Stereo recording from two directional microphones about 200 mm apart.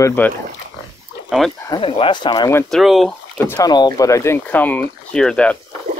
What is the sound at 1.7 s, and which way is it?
Speech, 25° left (ahead or behind).